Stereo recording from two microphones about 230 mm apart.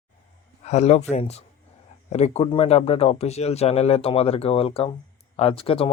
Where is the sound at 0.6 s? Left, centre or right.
Left.